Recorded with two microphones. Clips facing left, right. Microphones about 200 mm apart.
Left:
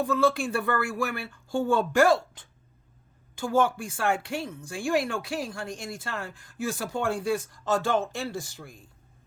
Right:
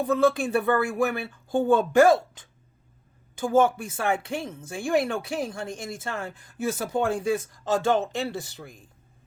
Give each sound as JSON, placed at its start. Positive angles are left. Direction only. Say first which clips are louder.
{"t": 0.0, "sound": "speech", "louder": "right 2 dB", "side_deg": -20}
{"t": 3.3, "sound": "speech", "louder": "right 3 dB", "side_deg": -20}
{"t": 8.3, "sound": "speech", "louder": "right 1 dB", "side_deg": -65}
{"t": 8.5, "sound": "speech", "louder": "right 2 dB", "side_deg": -20}